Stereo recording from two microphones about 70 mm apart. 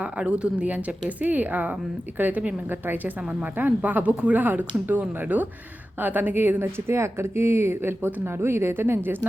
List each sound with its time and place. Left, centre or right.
0.0 s speech: centre; by 9.0 s right